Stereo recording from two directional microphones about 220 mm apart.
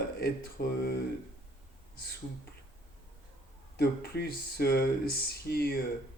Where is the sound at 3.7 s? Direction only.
45° left (ahead or behind).